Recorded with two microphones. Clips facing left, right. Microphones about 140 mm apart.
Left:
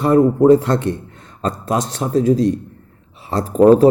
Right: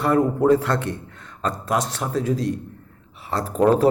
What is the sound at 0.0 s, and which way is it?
Speech, 25° left (ahead or behind).